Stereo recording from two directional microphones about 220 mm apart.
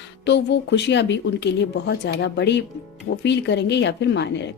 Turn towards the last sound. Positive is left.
turn(degrees=55)  # may be behind; listen again after turning